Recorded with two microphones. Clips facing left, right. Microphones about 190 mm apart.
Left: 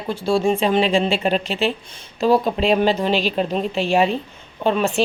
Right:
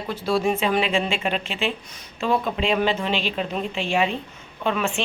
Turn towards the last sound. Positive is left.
turn(degrees=35)  # may be behind; listen again after turning